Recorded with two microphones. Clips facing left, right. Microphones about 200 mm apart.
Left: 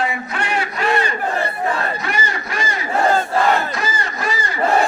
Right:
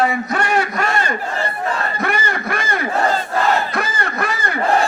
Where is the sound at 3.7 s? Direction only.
60° right (ahead or behind).